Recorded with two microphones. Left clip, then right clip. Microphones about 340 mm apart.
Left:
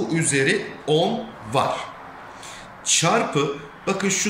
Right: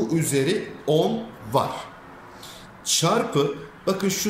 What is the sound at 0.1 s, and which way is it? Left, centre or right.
Speech, centre.